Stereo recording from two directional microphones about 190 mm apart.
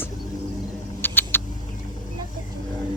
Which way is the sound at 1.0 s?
10° left (ahead or behind).